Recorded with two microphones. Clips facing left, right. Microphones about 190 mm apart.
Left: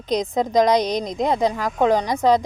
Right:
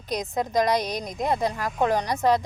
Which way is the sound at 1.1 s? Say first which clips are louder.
Left 3 dB; 90° left.